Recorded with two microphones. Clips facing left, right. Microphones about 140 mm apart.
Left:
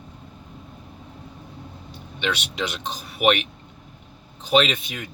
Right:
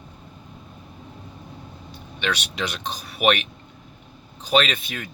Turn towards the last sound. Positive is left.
turn(degrees=20)  # may be behind; listen again after turning